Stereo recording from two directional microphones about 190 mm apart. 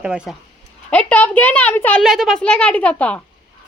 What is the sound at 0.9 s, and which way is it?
A child's voice, 5° left (ahead or behind).